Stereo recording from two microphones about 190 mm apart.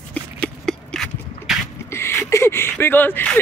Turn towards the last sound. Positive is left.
turn(degrees=10)  # may be behind; listen again after turning